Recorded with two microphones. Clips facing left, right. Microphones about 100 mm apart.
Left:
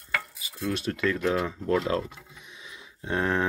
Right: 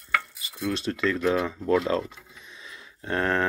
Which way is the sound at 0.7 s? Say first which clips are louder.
Right 1 dB; 5° left (ahead or behind).